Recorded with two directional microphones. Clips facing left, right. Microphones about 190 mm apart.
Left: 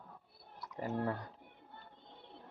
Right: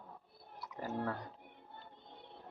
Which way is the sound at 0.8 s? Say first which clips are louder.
Left 2 dB; 15° left (ahead or behind).